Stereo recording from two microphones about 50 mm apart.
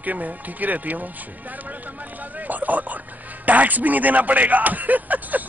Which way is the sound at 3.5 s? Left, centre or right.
Right.